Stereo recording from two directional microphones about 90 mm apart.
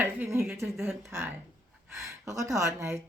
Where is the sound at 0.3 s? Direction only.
30° right (ahead or behind).